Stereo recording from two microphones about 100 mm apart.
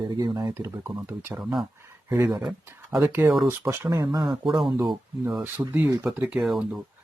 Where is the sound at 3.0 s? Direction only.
20° right (ahead or behind).